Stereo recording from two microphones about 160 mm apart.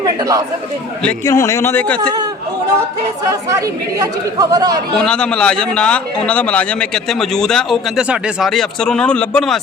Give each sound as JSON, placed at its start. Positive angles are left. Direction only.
{"t": 0.0, "sound": "speech", "side_deg": -20}
{"t": 1.2, "sound": "speech", "side_deg": 20}
{"t": 3.9, "sound": "speech", "side_deg": -25}
{"t": 5.0, "sound": "a man's voice", "side_deg": 5}